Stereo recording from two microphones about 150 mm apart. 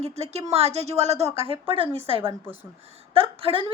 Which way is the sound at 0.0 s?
45° right (ahead or behind).